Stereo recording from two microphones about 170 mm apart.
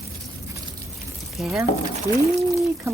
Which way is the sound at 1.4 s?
5° right (ahead or behind).